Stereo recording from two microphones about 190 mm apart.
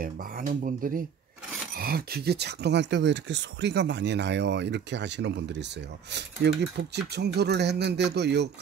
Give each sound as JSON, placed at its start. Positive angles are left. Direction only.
{"t": 0.0, "sound": "speech", "side_deg": -45}